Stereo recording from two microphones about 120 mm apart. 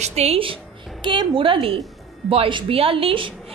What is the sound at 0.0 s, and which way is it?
A woman's voice, 65° right (ahead or behind).